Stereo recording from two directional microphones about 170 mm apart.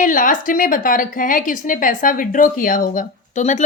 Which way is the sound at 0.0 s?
50° left (ahead or behind).